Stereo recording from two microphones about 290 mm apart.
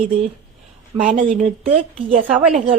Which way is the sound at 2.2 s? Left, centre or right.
Centre.